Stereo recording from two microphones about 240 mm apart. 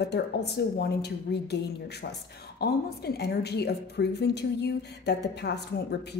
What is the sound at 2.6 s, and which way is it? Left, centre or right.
A woman's voice, left.